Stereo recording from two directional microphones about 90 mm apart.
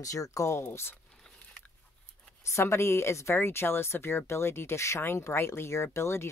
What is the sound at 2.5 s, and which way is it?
Speech, 30° left (ahead or behind).